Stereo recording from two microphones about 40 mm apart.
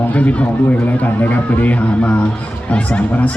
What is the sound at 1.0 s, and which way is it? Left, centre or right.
A man's voice, left.